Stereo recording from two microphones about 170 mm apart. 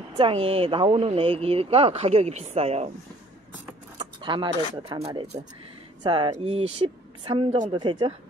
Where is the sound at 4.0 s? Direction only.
30° right (ahead or behind).